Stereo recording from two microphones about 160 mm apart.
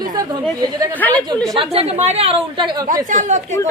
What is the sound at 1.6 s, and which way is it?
Speech, 35° right (ahead or behind).